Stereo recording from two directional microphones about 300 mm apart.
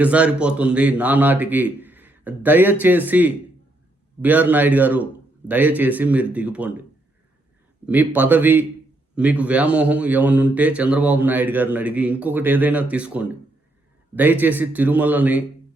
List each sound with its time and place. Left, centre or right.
0.0 s speech: centre
7.9 s speech: centre